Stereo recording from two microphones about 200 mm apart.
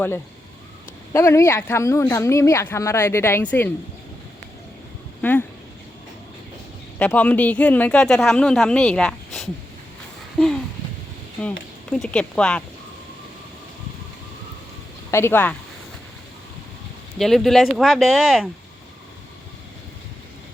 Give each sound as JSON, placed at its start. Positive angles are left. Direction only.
{"t": 1.1, "sound": "speech", "side_deg": 15}
{"t": 5.2, "sound": "speech", "side_deg": 10}
{"t": 7.0, "sound": "speech", "side_deg": 10}
{"t": 10.3, "sound": "a sound", "side_deg": 0}
{"t": 11.9, "sound": "speech", "side_deg": 5}
{"t": 15.1, "sound": "speech", "side_deg": 10}
{"t": 17.2, "sound": "speech", "side_deg": 0}